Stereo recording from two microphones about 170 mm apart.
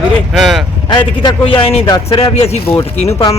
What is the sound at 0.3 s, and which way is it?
Speech, centre (ahead or behind).